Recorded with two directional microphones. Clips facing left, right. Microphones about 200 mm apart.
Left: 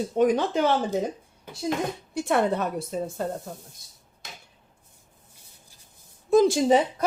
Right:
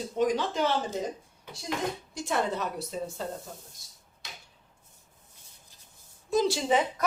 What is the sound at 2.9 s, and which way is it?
Speech, 45° left (ahead or behind).